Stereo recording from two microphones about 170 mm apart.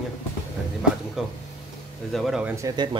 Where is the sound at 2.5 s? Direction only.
25° right (ahead or behind).